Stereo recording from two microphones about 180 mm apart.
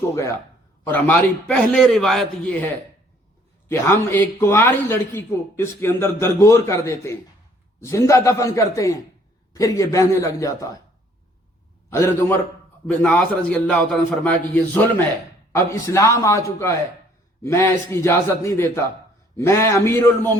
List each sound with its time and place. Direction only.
0.1 s a man's voice: 15° left (ahead or behind)
11.9 s a man's voice: 15° left (ahead or behind)
17.4 s a man's voice: 15° left (ahead or behind)